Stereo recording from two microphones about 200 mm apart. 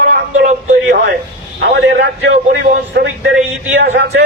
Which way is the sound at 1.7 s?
55° right (ahead or behind).